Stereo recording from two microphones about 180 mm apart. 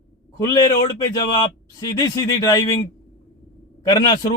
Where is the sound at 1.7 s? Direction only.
20° left (ahead or behind).